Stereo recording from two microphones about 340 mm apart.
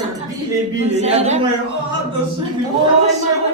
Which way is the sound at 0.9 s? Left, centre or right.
Centre.